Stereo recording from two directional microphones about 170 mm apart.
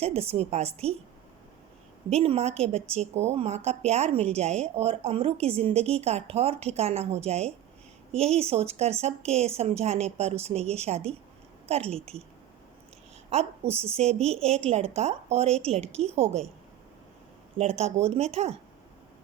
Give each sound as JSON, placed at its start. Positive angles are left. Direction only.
{"t": 0.0, "sound": "a woman's voice", "side_deg": -35}
{"t": 2.1, "sound": "a woman's voice", "side_deg": -35}
{"t": 13.3, "sound": "a woman's voice", "side_deg": -35}
{"t": 17.6, "sound": "a woman's voice", "side_deg": -40}